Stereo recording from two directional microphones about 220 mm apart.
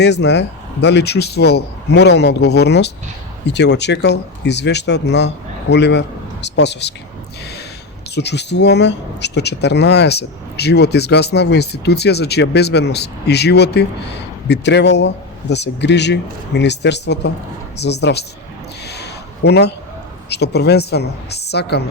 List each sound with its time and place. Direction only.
0.0 s speech: 50° left (ahead or behind)
8.1 s speech: 50° left (ahead or behind)
18.9 s a sound: 50° left (ahead or behind)
20.3 s speech: 50° left (ahead or behind)